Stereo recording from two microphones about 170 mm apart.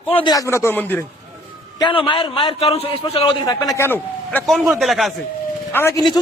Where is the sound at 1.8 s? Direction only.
30° left (ahead or behind).